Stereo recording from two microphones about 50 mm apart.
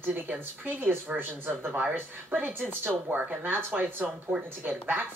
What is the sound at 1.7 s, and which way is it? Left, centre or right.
A woman's voice, right.